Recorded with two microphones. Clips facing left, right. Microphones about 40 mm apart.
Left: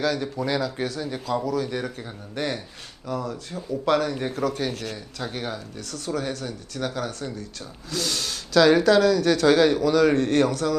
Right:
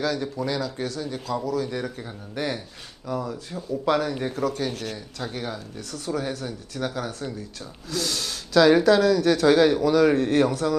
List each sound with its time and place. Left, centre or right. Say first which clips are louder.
0.0 s speech: left 1 dB; centre
1.5 s speech: left 1 dB; centre
3.1 s speech: even; centre
4.7 s a man's voice: even; left
5.2 s speech: left 1 dB; centre
5.9 s speech: even; centre